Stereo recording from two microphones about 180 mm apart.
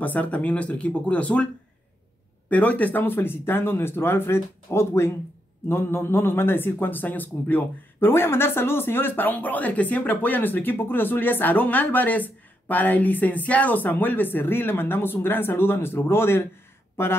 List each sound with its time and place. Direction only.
0.0 s a man's voice: 10° left (ahead or behind)
2.5 s a man's voice: 10° left (ahead or behind)